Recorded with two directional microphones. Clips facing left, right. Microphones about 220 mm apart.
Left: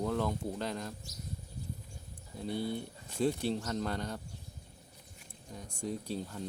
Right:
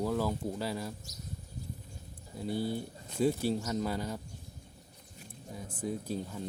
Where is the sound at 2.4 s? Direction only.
5° right (ahead or behind).